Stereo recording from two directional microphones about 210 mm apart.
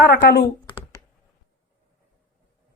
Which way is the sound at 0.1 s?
50° left (ahead or behind).